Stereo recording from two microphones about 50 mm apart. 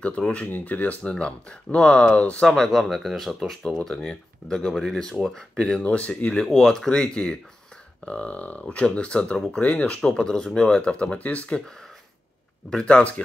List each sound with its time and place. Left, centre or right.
0.0 s speech: left
1.0 s speech: left
2.4 s speech: centre
3.7 s speech: centre
4.7 s speech: centre
5.8 s speech: left
6.4 s speech: centre; by 9.9 s left
10.0 s speech: centre
12.8 s speech: left